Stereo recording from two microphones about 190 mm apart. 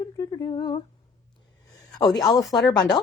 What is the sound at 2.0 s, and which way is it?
Speech, 20° left (ahead or behind).